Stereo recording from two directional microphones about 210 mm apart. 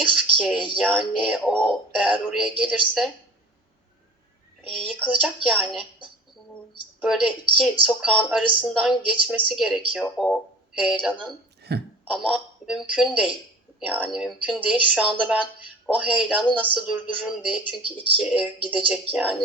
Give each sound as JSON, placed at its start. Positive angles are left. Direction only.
{"t": 0.0, "sound": "speech", "side_deg": -5}
{"t": 4.9, "sound": "speech", "side_deg": -5}
{"t": 7.0, "sound": "speech", "side_deg": -5}
{"t": 11.7, "sound": "speech", "side_deg": -50}
{"t": 12.1, "sound": "a man's voice", "side_deg": 0}